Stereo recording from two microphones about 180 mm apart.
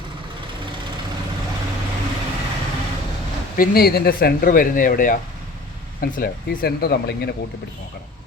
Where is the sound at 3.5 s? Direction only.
60° left (ahead or behind).